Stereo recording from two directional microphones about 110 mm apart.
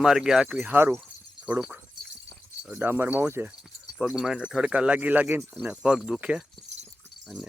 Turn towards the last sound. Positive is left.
turn(degrees=-5)  # may be behind; listen again after turning